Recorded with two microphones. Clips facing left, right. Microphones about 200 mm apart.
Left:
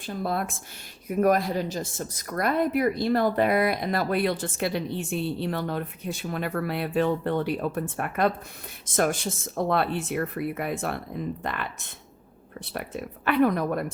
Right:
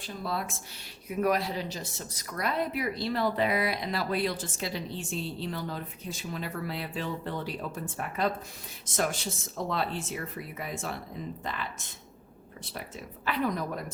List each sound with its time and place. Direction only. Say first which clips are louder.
0.0 s speech: left 5 dB; 55° left (ahead or behind)
12.7 s speech: left 8 dB; 60° left (ahead or behind)